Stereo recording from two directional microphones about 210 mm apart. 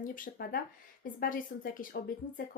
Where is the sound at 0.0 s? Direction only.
40° left (ahead or behind).